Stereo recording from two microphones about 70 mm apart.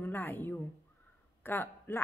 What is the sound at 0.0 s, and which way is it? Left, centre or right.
Speech, left.